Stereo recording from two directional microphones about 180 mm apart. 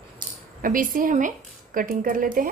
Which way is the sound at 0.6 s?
50° right (ahead or behind).